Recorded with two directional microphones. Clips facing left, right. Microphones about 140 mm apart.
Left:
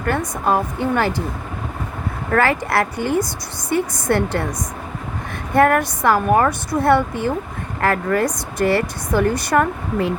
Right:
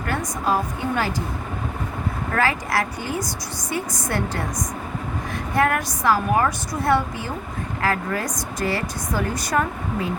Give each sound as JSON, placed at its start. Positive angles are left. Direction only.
{"t": 0.1, "sound": "a woman's voice", "side_deg": 60}
{"t": 2.3, "sound": "a woman's voice", "side_deg": 60}
{"t": 5.5, "sound": "a woman's voice", "side_deg": 55}